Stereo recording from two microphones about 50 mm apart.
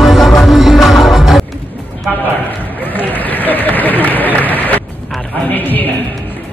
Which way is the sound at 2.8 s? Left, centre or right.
Left.